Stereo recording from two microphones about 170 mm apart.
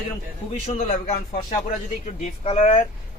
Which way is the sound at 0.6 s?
45° left (ahead or behind).